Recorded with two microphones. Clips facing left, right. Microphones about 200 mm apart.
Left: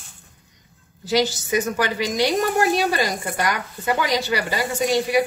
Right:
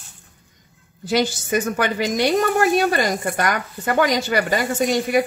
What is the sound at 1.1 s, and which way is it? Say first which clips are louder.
Speech: right 1 dB; 55° right (ahead or behind).